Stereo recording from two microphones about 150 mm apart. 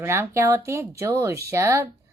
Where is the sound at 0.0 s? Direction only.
15° right (ahead or behind).